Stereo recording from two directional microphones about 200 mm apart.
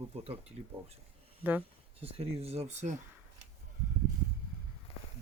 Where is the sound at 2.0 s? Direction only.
30° right (ahead or behind).